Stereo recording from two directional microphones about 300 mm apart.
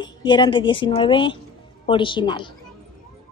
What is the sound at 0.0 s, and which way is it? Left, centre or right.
Speech, centre.